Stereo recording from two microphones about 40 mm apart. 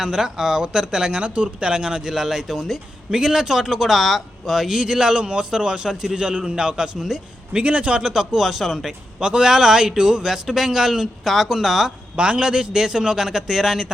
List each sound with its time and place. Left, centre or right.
0.0 s speech: centre
6.1 s a man's voice: right
7.5 s a man's voice: right
8.0 s speech: centre
9.2 s speech: centre
12.1 s speech: right; by 13.8 s centre